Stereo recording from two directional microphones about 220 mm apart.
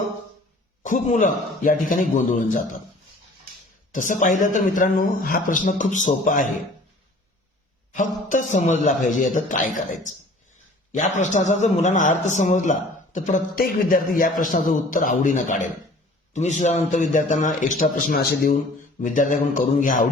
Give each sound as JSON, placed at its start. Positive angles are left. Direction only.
{"t": 0.8, "sound": "speech", "side_deg": 35}
{"t": 3.9, "sound": "speech", "side_deg": 35}
{"t": 7.9, "sound": "speech", "side_deg": 35}